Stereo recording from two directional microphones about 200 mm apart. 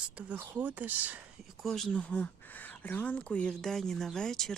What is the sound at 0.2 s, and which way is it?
Speech, 5° right (ahead or behind).